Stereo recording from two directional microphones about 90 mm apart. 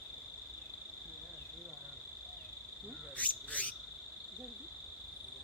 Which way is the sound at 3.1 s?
15° left (ahead or behind).